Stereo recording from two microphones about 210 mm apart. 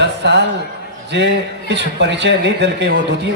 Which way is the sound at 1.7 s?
55° right (ahead or behind).